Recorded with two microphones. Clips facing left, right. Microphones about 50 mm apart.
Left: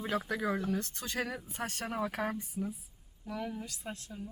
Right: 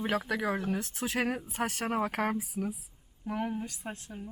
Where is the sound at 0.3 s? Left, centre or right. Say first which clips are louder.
Right 2 dB; right.